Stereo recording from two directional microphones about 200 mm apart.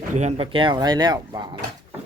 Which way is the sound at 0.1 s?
35° right (ahead or behind).